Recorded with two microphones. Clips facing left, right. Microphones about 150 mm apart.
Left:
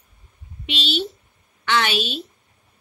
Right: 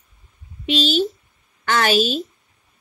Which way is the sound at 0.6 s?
40° right (ahead or behind).